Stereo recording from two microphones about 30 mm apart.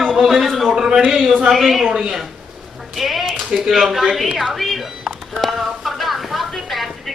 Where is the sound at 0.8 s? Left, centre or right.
Right.